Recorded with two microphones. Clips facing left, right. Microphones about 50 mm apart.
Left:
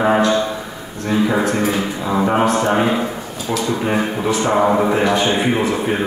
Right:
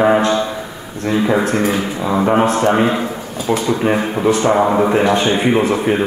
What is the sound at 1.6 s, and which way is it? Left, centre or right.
Speech, centre.